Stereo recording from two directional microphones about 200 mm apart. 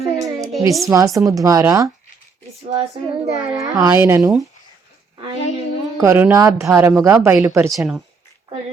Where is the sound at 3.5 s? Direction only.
15° right (ahead or behind).